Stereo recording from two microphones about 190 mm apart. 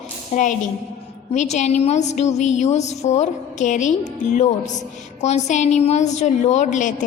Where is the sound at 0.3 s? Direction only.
40° left (ahead or behind).